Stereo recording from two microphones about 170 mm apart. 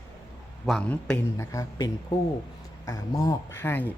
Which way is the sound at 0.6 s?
5° left (ahead or behind).